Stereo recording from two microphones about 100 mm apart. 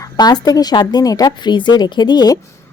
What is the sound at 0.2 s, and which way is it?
Speech, 40° left (ahead or behind).